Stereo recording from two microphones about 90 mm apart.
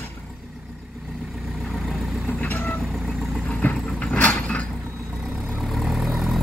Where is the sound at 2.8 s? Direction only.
Centre (ahead or behind).